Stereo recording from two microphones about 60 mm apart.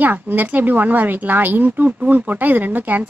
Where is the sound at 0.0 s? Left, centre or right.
Right.